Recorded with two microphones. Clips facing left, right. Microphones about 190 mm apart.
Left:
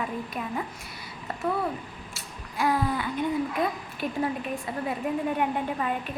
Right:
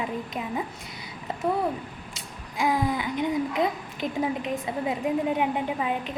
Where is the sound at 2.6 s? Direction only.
15° right (ahead or behind).